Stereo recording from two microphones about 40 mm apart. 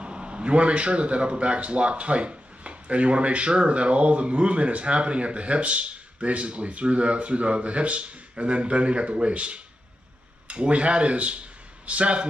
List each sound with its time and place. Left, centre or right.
0.0 s a man's voice: right